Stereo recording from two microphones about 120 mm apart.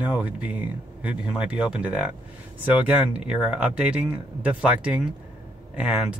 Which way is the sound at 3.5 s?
10° right (ahead or behind).